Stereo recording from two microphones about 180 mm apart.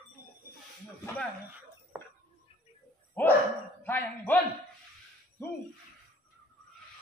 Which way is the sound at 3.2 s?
10° left (ahead or behind).